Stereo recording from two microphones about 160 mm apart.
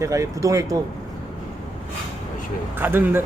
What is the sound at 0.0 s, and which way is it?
Speech, 20° right (ahead or behind).